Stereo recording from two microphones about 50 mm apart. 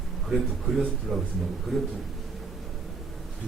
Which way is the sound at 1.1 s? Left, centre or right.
Centre.